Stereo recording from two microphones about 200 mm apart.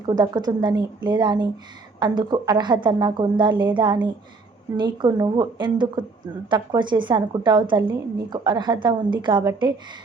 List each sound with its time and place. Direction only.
0.0 s a woman's voice: 20° right (ahead or behind)